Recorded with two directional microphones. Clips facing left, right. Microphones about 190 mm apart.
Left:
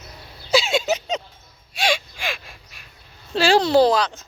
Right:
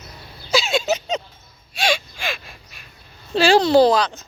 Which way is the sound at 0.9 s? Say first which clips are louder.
Right 1 dB; 10° left (ahead or behind).